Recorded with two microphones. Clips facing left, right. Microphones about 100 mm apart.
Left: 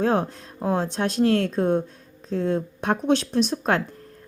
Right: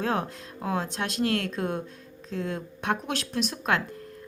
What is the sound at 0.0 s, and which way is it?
Speech, 30° left (ahead or behind).